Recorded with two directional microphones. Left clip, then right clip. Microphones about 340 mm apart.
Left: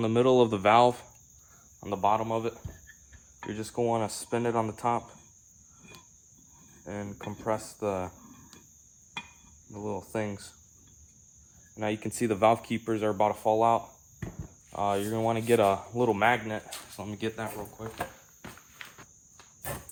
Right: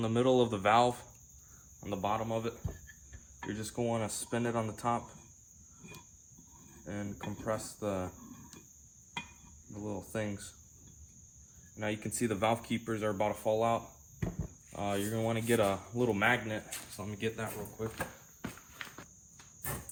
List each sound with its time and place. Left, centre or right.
0.0 s speech: left
6.8 s speech: left
9.8 s speech: left
11.8 s speech: left